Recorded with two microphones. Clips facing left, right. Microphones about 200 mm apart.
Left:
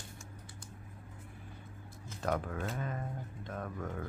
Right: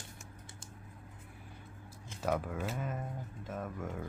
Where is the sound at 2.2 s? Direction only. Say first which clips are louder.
Right 1 dB; 5° right (ahead or behind).